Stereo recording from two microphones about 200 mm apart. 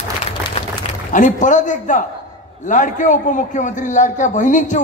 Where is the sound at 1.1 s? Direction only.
40° left (ahead or behind).